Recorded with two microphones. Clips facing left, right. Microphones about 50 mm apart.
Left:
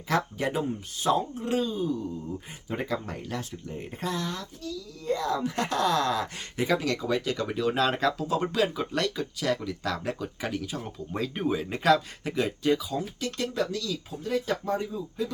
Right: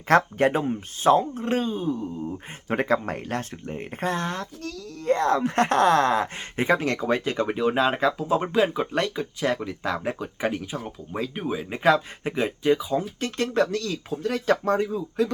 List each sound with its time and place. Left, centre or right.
0.1 s speech: right
2.6 s speech: right
4.7 s speech: right
10.8 s speech: centre
11.8 s speech: right
13.1 s speech: right